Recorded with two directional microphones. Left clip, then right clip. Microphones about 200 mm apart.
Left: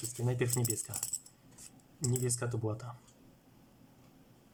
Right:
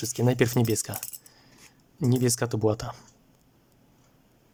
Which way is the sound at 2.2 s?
55° right (ahead or behind).